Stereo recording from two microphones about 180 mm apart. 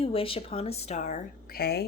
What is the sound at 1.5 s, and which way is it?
Speech, 60° left (ahead or behind).